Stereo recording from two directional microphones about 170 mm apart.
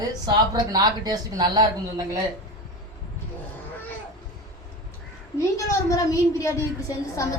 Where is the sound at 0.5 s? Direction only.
25° right (ahead or behind).